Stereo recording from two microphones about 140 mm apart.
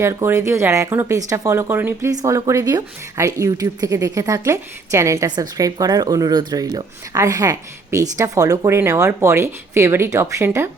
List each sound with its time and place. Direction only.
0.0 s speech: 20° right (ahead or behind)